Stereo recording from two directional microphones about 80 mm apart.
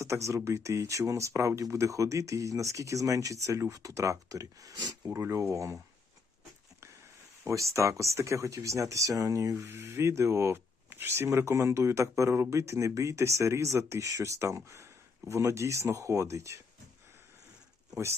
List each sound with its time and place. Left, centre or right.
0.0 s speech: right
5.0 s speech: right
7.4 s speech: right
9.6 s speech: right